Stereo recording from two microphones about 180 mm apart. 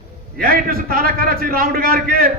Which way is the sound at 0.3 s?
55° right (ahead or behind).